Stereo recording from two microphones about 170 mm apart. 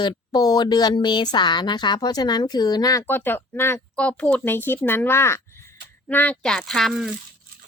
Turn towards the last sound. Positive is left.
turn(degrees=0)  # may be behind; listen again after turning